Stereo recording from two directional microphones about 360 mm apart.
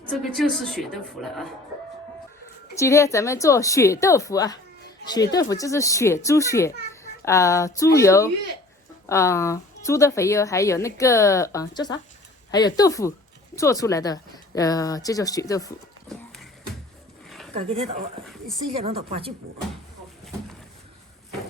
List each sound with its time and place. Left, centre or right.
0.0 s a woman's voice: centre
2.7 s a woman's voice: centre
17.2 s a sound: centre
17.5 s speech: centre
18.3 s speech: centre
18.6 s speech: centre